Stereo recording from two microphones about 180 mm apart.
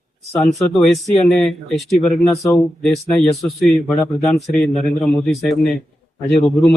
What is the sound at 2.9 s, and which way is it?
Speech, 35° left (ahead or behind).